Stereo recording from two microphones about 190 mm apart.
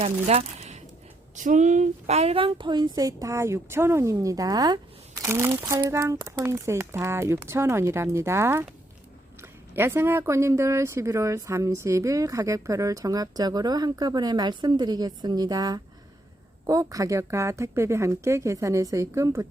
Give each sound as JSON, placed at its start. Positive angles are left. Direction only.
{"t": 0.0, "sound": "speech", "side_deg": -35}